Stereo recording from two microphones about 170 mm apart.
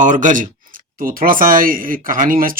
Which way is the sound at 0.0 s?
50° right (ahead or behind).